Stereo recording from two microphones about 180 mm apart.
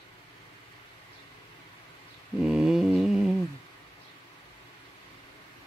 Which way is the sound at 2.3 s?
5° right (ahead or behind).